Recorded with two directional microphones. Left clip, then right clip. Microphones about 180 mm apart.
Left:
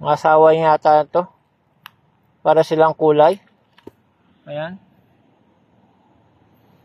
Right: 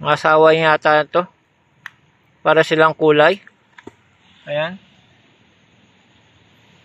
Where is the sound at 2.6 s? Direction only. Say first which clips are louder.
Right 1 dB; centre (ahead or behind).